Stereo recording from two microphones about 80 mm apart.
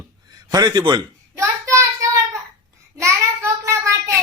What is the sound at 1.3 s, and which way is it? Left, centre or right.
Child singing, right.